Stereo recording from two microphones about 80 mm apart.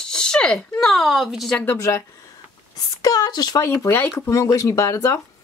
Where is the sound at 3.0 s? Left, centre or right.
Left.